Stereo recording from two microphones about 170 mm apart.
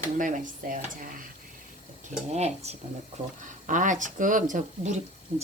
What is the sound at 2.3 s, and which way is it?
Speech, 40° right (ahead or behind).